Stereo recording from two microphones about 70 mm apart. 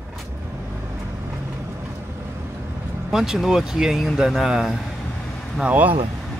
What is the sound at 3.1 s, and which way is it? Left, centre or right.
Speech, centre.